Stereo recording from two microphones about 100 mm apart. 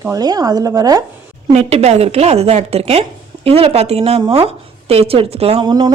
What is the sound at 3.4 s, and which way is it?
Speech, 80° right.